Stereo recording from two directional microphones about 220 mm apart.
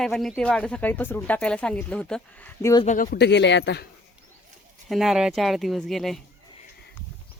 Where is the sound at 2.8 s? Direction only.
35° left (ahead or behind); by 3.8 s 50° left (ahead or behind).